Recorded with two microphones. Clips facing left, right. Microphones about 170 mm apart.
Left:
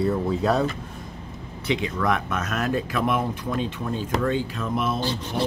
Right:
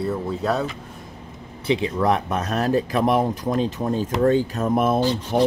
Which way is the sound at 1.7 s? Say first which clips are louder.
Right 4 dB; 30° right (ahead or behind).